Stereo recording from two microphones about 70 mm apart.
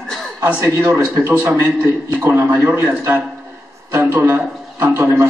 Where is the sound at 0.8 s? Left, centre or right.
Right.